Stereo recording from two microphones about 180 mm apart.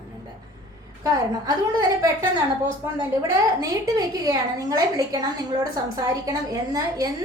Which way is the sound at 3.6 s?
20° right (ahead or behind).